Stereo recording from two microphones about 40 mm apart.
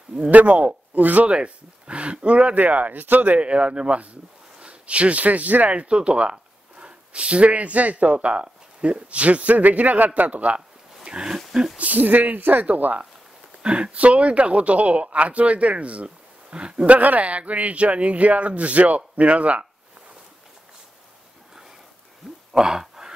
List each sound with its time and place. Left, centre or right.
0.3 s speech: right
1.3 s speech: right
3.3 s speech: right
5.7 s speech: right
11.1 s a sound: right
11.8 s speech: right
13.6 s speech: right
16.8 s speech: right
22.5 s a sound: centre